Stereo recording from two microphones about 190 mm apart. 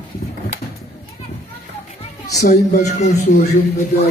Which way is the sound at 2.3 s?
60° left (ahead or behind).